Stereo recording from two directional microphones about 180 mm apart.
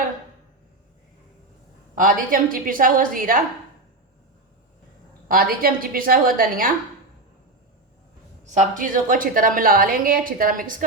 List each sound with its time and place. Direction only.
2.0 s a woman's voice: 50° right (ahead or behind)
5.3 s a woman's voice: 55° right (ahead or behind)
8.4 s a woman's voice: 45° right (ahead or behind)